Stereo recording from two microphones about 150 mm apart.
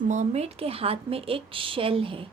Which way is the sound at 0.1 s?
50° right (ahead or behind).